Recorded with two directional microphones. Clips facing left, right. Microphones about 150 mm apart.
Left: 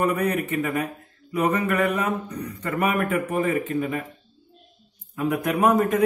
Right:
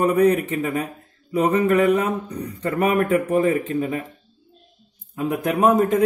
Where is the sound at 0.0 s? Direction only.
30° right (ahead or behind).